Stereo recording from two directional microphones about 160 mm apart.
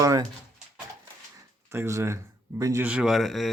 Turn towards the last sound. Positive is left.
turn(degrees=0)  # may be behind; listen again after turning